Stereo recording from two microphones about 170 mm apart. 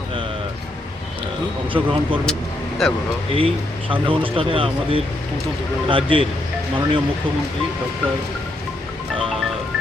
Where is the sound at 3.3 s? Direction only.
30° right (ahead or behind).